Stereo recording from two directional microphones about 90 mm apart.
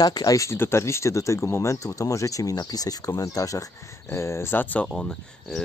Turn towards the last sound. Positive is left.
turn(degrees=5)  # may be behind; listen again after turning